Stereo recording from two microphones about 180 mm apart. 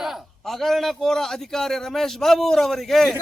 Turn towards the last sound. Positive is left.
turn(degrees=0)  # may be behind; listen again after turning